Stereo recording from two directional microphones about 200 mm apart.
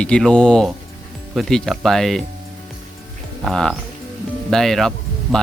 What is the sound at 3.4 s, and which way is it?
Speech, centre (ahead or behind).